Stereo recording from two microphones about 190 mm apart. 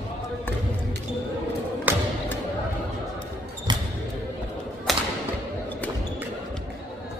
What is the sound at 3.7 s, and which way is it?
Basketball bounce, 25° right (ahead or behind).